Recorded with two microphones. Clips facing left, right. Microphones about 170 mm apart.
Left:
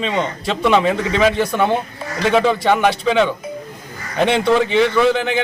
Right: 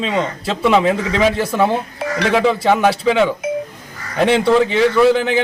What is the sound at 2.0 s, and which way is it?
Music, 75° right (ahead or behind).